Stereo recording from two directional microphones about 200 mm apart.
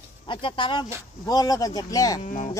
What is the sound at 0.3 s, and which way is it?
Speech, 25° left (ahead or behind).